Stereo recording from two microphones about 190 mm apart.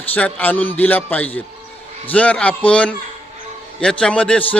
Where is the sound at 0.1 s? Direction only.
5° left (ahead or behind).